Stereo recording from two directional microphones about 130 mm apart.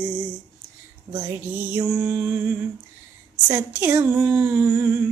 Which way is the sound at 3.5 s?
20° right (ahead or behind).